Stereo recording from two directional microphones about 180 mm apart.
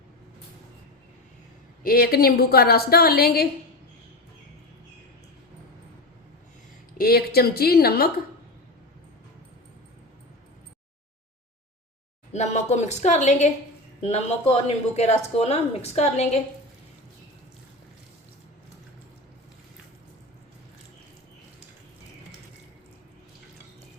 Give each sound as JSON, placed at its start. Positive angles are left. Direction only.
{"t": 1.8, "sound": "a woman's voice", "side_deg": 55}
{"t": 6.9, "sound": "a woman's voice", "side_deg": 55}
{"t": 12.3, "sound": "speech", "side_deg": 40}